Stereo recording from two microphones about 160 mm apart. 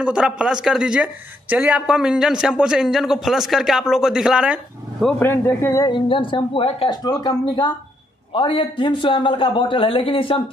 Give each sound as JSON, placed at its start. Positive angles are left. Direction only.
{"t": 0.0, "sound": "speech", "side_deg": -5}
{"t": 5.2, "sound": "speech", "side_deg": 15}
{"t": 5.9, "sound": "a man's voice", "side_deg": 30}